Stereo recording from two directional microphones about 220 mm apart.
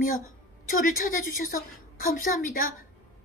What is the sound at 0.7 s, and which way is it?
A woman's voice, 40° left (ahead or behind).